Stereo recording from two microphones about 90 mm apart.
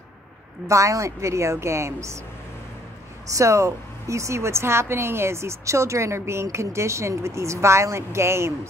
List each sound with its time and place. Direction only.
0.7 s speech: 35° right (ahead or behind)
3.3 s speech: 35° right (ahead or behind)